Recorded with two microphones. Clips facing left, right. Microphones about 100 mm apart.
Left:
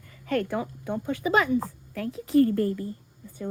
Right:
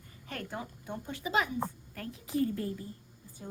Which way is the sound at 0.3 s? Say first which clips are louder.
Left 13 dB; 90° left.